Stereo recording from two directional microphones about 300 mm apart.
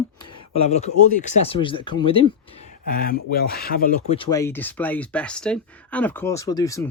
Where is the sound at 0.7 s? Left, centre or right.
Centre.